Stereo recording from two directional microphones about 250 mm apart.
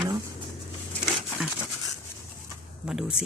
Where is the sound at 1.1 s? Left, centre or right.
Centre.